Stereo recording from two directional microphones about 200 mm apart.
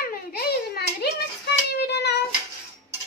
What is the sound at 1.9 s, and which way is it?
Child singing, 60° left (ahead or behind).